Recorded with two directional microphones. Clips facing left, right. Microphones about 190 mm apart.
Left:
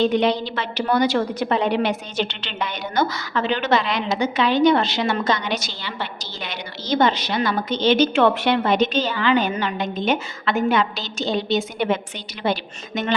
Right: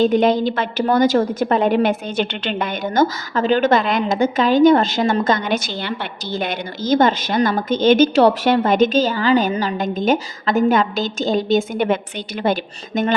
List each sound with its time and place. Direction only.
0.0 s a woman's voice: 45° right (ahead or behind)